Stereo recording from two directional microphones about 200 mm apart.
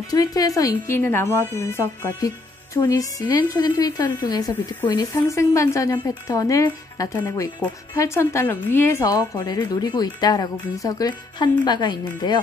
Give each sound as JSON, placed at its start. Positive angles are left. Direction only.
{"t": 0.1, "sound": "speech", "side_deg": 20}